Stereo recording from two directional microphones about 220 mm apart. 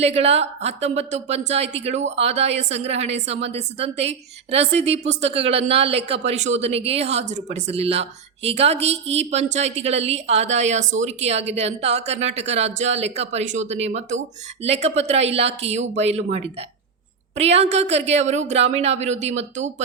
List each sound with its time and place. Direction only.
0.0 s a woman's voice: 30° right (ahead or behind)